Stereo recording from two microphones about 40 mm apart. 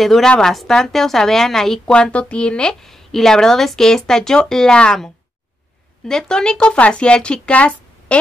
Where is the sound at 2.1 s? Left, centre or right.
Left.